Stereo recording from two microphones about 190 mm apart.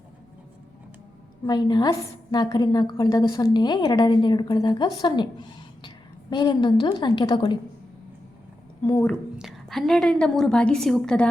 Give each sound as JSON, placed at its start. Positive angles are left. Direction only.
{"t": 1.5, "sound": "a woman's voice", "side_deg": 20}
{"t": 8.8, "sound": "a woman's voice", "side_deg": 15}
{"t": 9.0, "sound": "a woman's voice", "side_deg": 0}